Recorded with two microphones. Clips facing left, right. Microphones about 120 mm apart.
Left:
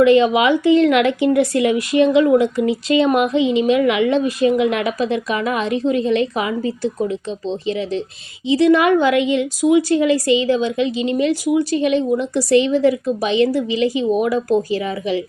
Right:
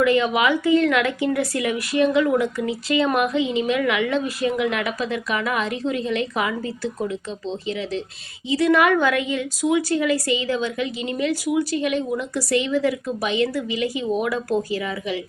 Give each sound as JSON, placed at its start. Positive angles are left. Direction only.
{"t": 0.0, "sound": "speech", "side_deg": 25}